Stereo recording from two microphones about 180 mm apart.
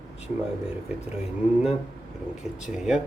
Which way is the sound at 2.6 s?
5° right (ahead or behind).